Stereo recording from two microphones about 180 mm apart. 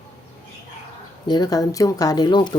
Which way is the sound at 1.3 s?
20° left (ahead or behind).